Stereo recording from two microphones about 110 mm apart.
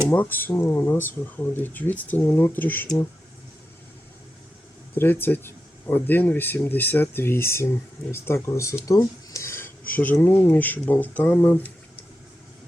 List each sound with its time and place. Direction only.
0.1 s speech: 15° left (ahead or behind)
4.9 s speech: 20° left (ahead or behind)